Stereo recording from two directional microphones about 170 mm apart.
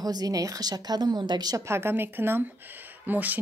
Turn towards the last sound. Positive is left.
turn(degrees=-10)  # may be behind; listen again after turning